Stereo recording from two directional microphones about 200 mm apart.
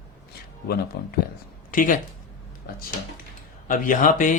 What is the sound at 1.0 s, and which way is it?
Speech, 55° left (ahead or behind).